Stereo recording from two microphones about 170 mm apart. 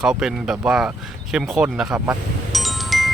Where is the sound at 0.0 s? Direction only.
5° right (ahead or behind).